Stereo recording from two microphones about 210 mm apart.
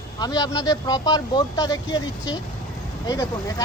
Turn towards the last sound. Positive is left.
turn(degrees=15)  # may be behind; listen again after turning